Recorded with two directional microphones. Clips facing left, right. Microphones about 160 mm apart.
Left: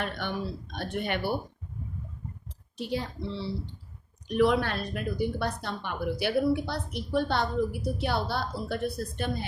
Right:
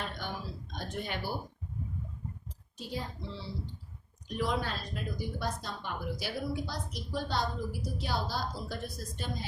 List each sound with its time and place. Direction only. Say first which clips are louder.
0.0 s speech: left 6 dB; 70° left (ahead or behind)
2.7 s a woman's voice: left 7 dB; 70° left (ahead or behind)